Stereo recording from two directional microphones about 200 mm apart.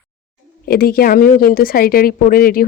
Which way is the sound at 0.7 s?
50° left (ahead or behind).